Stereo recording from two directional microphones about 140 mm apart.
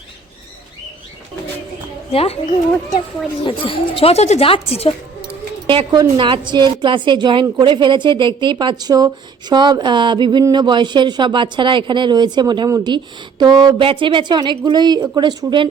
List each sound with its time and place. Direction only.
2.1 s a woman's voice: 45° left (ahead or behind)
5.6 s a woman's voice: 35° right (ahead or behind)